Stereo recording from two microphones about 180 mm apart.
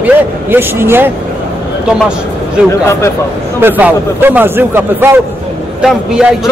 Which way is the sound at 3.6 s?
10° right (ahead or behind).